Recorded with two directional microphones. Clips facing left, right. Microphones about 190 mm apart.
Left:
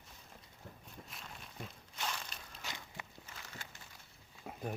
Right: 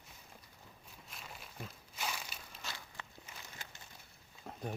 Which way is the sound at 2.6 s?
15° left (ahead or behind).